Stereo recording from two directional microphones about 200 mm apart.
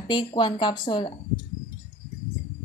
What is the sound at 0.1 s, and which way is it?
A woman's voice, 20° left (ahead or behind).